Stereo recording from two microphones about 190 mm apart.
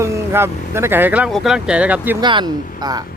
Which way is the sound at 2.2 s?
25° right (ahead or behind).